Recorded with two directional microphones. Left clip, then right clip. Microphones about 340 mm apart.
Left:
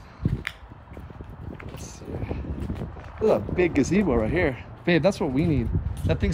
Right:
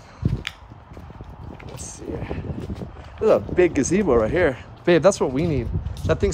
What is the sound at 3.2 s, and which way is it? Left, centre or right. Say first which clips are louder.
Speech: right 4 dB; right.